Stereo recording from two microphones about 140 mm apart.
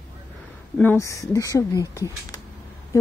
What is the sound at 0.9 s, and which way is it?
Speech, 20° left (ahead or behind).